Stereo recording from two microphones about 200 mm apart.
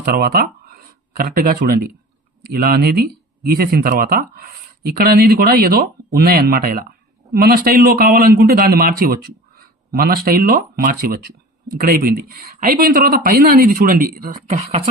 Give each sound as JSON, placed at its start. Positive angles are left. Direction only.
{"t": 0.0, "sound": "a man's voice", "side_deg": -50}